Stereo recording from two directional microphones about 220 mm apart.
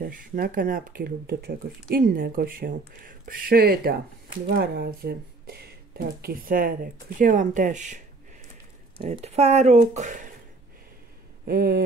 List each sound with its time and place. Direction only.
0.0 s speech: 40° right (ahead or behind)
9.1 s speech: 30° right (ahead or behind)
11.4 s a sound: 45° right (ahead or behind)